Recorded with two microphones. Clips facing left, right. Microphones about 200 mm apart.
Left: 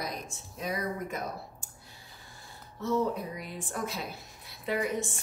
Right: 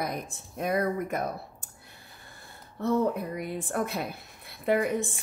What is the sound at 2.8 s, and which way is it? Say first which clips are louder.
Speech: right 3 dB; 60° right (ahead or behind).